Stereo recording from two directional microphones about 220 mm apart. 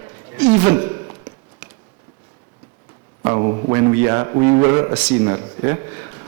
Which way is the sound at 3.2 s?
20° right (ahead or behind).